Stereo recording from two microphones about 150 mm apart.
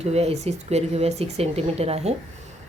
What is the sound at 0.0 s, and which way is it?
Speech, 45° right (ahead or behind).